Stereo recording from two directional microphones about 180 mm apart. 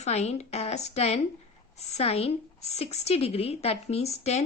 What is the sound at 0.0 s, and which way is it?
Speech, 40° left (ahead or behind).